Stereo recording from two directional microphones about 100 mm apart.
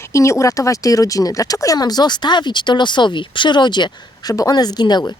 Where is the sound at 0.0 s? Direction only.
30° left (ahead or behind).